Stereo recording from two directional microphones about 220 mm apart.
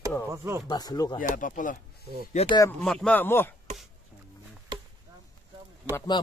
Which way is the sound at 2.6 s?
5° left (ahead or behind).